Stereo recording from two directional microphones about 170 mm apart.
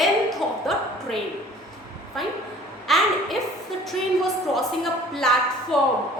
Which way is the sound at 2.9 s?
Centre (ahead or behind).